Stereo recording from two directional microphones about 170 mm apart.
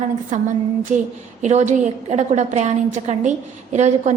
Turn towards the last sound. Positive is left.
turn(degrees=-40)  # may be behind; listen again after turning